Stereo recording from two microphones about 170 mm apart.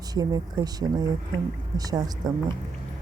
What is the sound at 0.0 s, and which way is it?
Speech, 20° right (ahead or behind).